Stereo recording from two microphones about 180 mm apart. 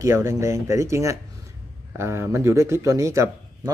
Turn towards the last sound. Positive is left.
turn(degrees=-15)  # may be behind; listen again after turning